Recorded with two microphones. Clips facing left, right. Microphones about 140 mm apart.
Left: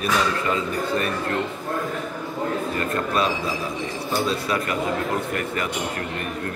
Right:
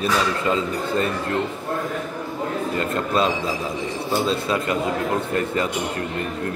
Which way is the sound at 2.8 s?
25° right (ahead or behind).